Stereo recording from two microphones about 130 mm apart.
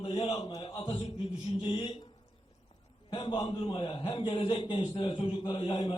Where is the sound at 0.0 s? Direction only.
45° left (ahead or behind).